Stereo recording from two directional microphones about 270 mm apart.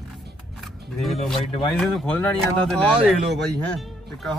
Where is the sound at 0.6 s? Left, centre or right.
Centre.